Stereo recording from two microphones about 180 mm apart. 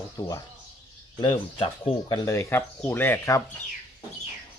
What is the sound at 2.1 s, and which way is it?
Speech, 15° left (ahead or behind).